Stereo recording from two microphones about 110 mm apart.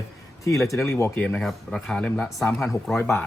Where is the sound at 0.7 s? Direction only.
25° left (ahead or behind).